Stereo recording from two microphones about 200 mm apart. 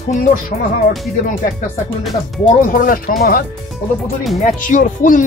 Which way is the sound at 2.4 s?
40° left (ahead or behind).